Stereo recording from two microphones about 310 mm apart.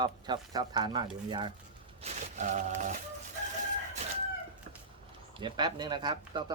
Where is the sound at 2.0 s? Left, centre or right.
Right.